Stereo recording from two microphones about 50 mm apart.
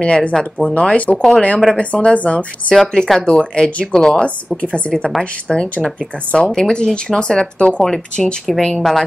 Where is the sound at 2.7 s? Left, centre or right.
Centre.